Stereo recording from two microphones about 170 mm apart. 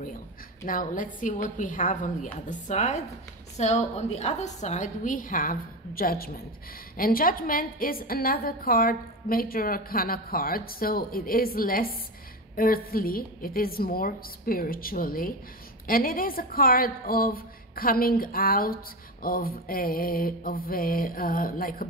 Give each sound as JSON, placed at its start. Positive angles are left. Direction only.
{"t": 0.7, "sound": "a woman's voice", "side_deg": 50}